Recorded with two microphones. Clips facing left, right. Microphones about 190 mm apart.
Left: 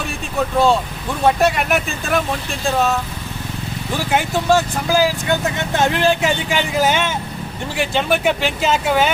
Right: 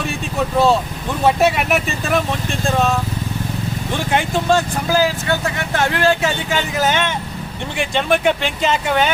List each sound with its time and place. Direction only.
1.2 s speech: centre (ahead or behind)